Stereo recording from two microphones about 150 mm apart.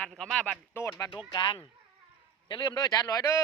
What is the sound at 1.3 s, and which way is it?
Speech, 30° left (ahead or behind).